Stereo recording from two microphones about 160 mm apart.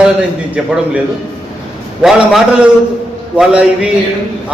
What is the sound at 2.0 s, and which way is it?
A man's voice, centre (ahead or behind).